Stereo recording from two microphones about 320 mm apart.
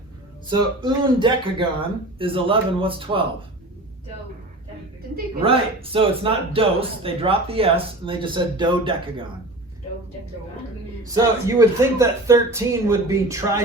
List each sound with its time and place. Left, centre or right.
0.8 s a man's voice: centre
5.4 s a man's voice: centre
11.0 s a man's voice: centre